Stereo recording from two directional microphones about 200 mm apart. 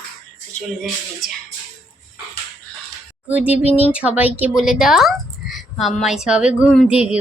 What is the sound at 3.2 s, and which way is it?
A woman's voice, 5° right (ahead or behind).